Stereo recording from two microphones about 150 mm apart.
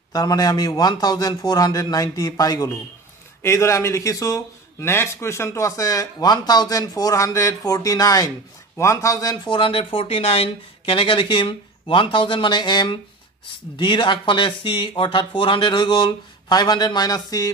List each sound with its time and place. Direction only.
0.1 s a man's voice: 25° left (ahead or behind)